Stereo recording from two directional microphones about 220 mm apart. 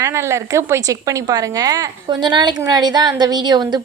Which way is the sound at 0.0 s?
10° right (ahead or behind).